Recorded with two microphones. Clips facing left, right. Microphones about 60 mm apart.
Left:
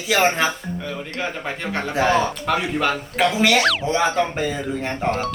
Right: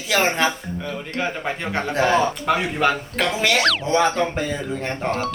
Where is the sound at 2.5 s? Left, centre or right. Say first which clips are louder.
Right 1 dB; centre.